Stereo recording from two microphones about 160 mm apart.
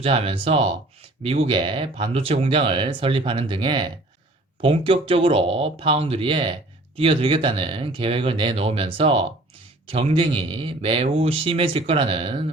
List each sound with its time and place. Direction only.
0.0 s speech: 35° right (ahead or behind)